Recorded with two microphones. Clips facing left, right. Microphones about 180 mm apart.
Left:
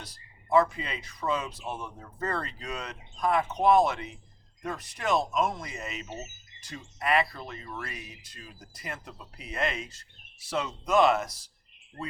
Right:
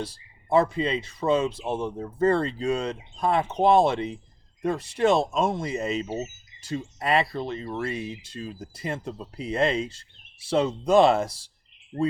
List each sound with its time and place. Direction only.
0.0 s speech: 30° right (ahead or behind)